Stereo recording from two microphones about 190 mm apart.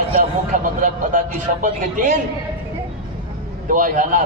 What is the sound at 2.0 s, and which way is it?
Speech, 45° right (ahead or behind).